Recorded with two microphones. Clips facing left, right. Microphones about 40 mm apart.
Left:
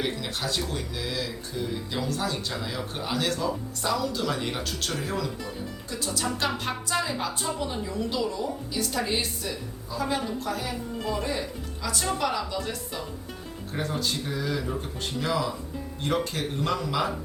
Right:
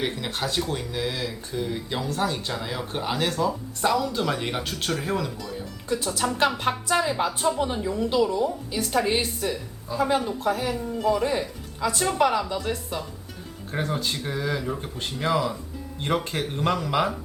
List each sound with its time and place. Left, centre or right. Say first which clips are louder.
0.0 s speech: right 2 dB; right
5.9 s speech: right 5 dB; right
14.1 s speech: right 2 dB; right